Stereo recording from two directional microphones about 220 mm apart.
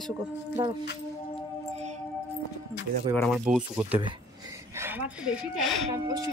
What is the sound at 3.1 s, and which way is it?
Speech, centre (ahead or behind).